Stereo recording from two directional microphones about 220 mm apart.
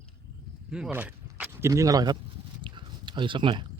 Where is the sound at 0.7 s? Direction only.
5° right (ahead or behind).